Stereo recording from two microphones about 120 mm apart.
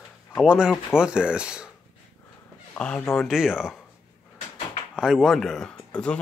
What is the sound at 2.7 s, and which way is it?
Speech, 10° left (ahead or behind).